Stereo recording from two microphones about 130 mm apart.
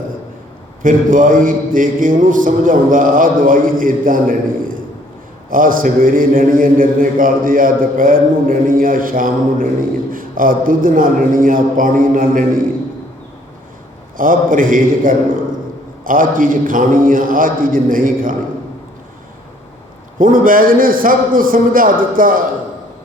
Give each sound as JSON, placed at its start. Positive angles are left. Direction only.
{"t": 0.8, "sound": "mantra", "side_deg": -90}
{"t": 14.2, "sound": "mantra", "side_deg": -90}
{"t": 20.1, "sound": "mantra", "side_deg": -90}